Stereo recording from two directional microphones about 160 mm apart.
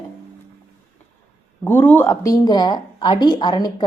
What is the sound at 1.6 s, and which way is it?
A woman's voice, 10° left (ahead or behind).